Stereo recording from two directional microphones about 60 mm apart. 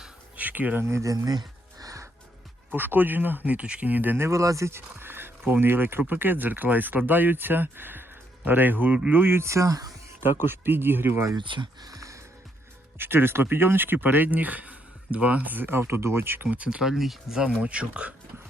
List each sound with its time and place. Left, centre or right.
0.3 s a sound: right
0.8 s speech: right
1.1 s speech: right
1.8 s music: right
2.7 s speech: right
4.2 s speech: right
4.7 s speech: right
10.4 s speech: right
11.9 s music: right
13.0 s speech: right
16.6 s speech: centre
16.9 s speech: centre
17.6 s speech: centre